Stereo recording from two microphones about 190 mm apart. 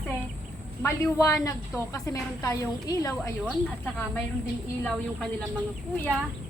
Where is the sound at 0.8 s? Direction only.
15° left (ahead or behind).